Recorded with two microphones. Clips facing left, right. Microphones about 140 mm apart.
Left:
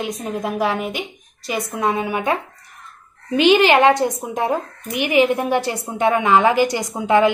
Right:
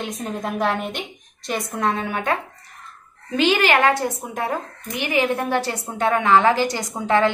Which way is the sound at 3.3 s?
20° left (ahead or behind).